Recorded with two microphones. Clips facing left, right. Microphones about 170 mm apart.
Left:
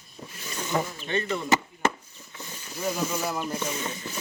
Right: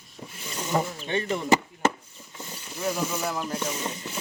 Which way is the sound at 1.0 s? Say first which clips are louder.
Right 1 dB; 15° right (ahead or behind).